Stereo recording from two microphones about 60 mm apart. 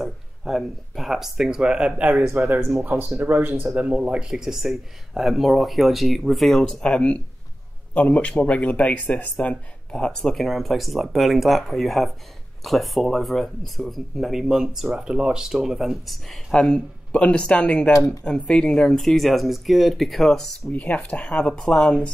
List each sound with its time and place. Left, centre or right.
0.0 s speech: centre
2.3 s speech: right; by 6.8 s centre
6.8 s speech: centre
9.8 s speech: centre
10.3 s speech: centre
16.6 s speech: centre
17.9 s speech: left
18.2 s speech: centre
20.7 s speech: left